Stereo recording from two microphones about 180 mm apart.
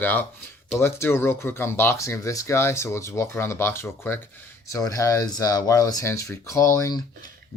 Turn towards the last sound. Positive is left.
turn(degrees=15)  # may be behind; listen again after turning